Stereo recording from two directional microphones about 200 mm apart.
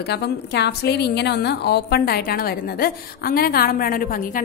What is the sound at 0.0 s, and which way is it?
A woman's voice, 55° left (ahead or behind).